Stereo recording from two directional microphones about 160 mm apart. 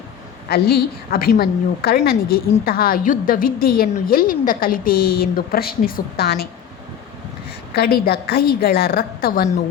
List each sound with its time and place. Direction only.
0.4 s a woman's voice: 80° left
7.8 s a woman's voice: 70° left (ahead or behind)